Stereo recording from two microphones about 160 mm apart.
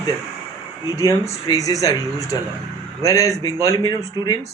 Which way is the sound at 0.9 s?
20° left (ahead or behind).